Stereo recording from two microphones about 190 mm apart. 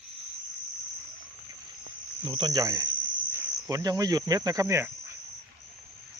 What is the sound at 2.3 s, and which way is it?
Speech, 25° right (ahead or behind).